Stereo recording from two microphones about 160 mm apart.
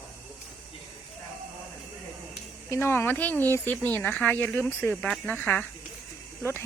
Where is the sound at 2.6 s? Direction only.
15° left (ahead or behind).